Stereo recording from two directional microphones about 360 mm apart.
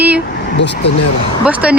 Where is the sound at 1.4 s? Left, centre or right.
Centre.